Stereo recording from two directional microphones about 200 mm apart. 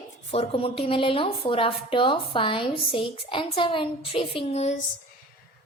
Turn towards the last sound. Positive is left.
turn(degrees=30)  # may be behind; listen again after turning